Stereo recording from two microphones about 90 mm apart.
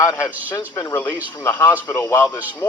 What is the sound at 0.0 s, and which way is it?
Speech, 35° left (ahead or behind).